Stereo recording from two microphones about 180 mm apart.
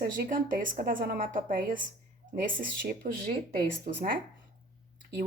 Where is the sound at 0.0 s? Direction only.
50° right (ahead or behind).